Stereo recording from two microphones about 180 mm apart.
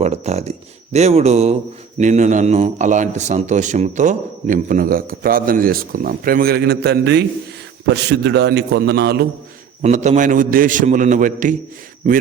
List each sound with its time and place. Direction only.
0.0 s a man's voice: 35° right (ahead or behind); by 9.2 s 65° right (ahead or behind)
9.8 s a man's voice: 40° right (ahead or behind)